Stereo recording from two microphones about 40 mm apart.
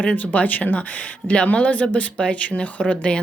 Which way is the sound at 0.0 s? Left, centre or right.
Left.